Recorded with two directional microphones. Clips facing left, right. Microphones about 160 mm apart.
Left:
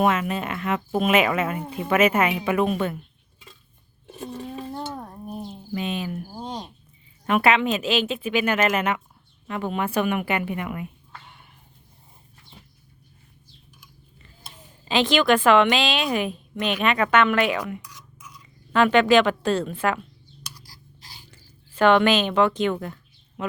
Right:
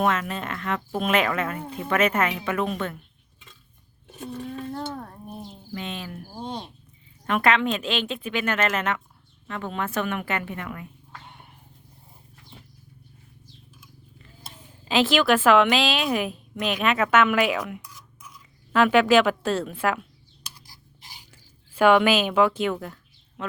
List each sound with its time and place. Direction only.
0.0 s speech: 10° left (ahead or behind)
4.2 s speech: 30° left (ahead or behind)
4.5 s a sound: 10° left (ahead or behind)
7.3 s speech: 5° left (ahead or behind)
14.2 s a woman's voice: centre (ahead or behind)
20.4 s a sound: 20° right (ahead or behind)
21.8 s a woman's voice: 5° right (ahead or behind)